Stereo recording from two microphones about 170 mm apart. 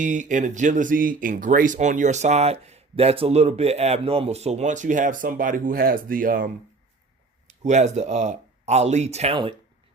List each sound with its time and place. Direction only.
0.0 s speech: 45° right (ahead or behind)
7.4 s speech: 45° right (ahead or behind)